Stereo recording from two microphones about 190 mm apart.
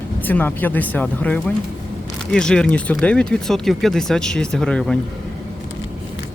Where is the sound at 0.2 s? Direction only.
10° left (ahead or behind).